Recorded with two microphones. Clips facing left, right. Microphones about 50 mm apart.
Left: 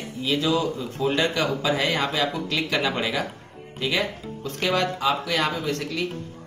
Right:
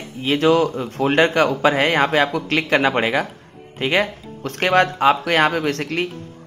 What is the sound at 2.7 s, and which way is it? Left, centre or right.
A man's voice, right.